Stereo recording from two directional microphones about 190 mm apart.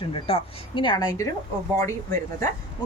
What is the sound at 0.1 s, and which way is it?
Speech, 30° left (ahead or behind).